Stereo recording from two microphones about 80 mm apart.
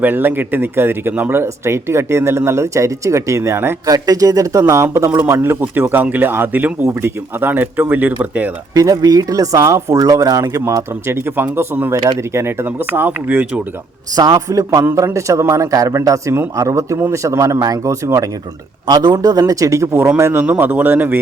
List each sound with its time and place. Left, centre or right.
0.0 s speech: right
3.8 s speech: right; by 8.4 s centre
8.7 s speech: right; by 13.6 s centre
14.2 s speech: right
14.9 s speech: right
18.9 s speech: right
20.4 s speech: right